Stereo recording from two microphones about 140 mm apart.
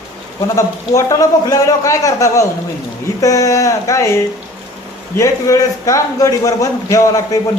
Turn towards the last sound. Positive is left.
turn(degrees=25)  # may be behind; listen again after turning